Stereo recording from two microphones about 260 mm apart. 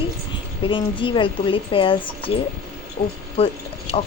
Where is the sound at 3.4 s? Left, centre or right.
Left.